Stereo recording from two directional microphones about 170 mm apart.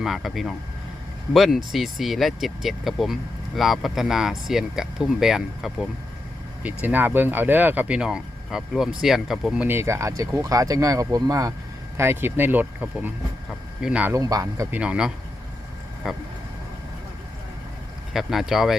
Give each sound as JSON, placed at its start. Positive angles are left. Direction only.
{"t": 0.0, "sound": "speech", "side_deg": 0}
{"t": 14.1, "sound": "speech", "side_deg": -20}
{"t": 14.8, "sound": "speech", "side_deg": -5}
{"t": 18.1, "sound": "speech", "side_deg": 0}